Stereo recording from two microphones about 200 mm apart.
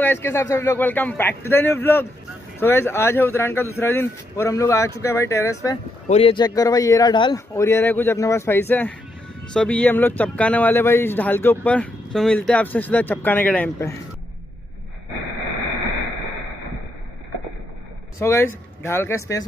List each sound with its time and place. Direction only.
0.0 s speech: 10° left (ahead or behind)
6.0 s speech: 30° left (ahead or behind); by 13.9 s 10° left (ahead or behind)
18.2 s speech: 10° left (ahead or behind)